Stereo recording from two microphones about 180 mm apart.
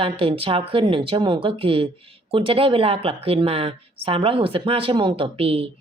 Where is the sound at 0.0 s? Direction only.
30° right (ahead or behind).